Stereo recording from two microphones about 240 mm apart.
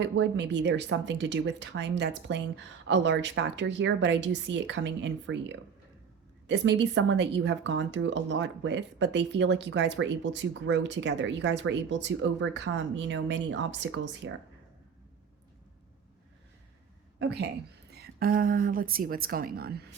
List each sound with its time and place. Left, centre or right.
0.0 s speech: right
17.2 s a woman's voice: right